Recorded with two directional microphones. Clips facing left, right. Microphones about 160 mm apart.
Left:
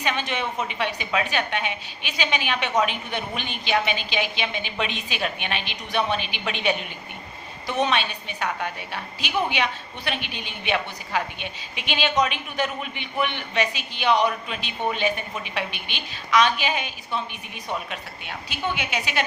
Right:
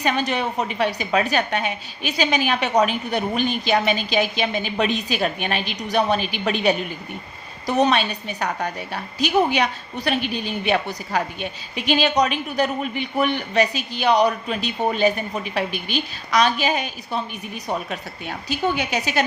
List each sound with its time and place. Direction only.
0.0 s a woman's voice: 40° right (ahead or behind)